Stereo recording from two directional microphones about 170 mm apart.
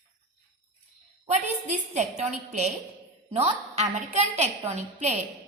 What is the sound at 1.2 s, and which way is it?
A woman's voice, 45° right (ahead or behind).